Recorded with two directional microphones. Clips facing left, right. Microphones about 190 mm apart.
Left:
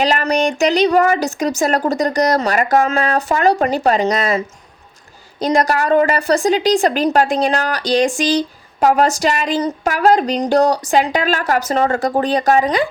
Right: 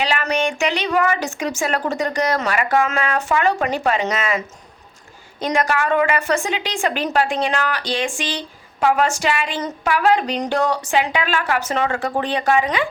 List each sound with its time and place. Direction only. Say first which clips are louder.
0.0 s a woman's voice: left 5 dB; 40° left (ahead or behind)